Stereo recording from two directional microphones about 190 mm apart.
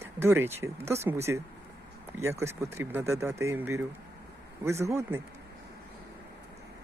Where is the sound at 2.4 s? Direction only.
15° right (ahead or behind).